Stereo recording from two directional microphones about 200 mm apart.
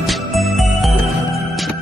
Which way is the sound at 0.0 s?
Centre (ahead or behind).